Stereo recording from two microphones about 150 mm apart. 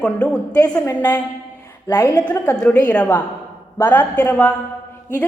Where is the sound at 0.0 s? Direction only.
10° left (ahead or behind).